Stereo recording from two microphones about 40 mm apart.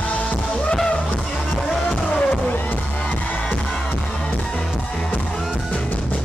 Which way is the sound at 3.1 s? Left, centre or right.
Left.